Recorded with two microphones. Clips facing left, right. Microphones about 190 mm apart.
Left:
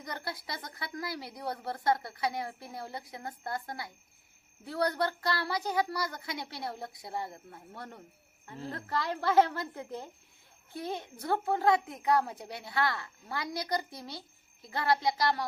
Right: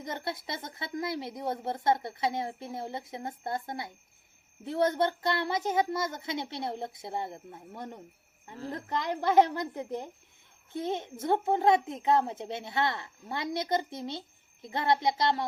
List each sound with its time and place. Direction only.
0.0 s a child's voice: 20° right (ahead or behind)